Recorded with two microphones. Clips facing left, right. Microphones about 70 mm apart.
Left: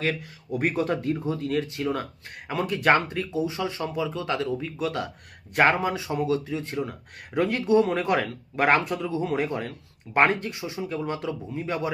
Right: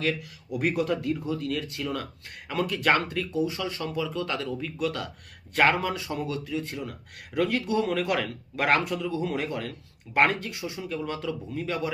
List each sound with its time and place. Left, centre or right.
0.0 s speech: left